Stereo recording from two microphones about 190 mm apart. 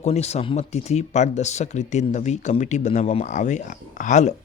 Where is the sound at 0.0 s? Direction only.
35° left (ahead or behind).